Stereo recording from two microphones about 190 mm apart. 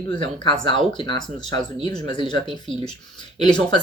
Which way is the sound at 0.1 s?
25° left (ahead or behind).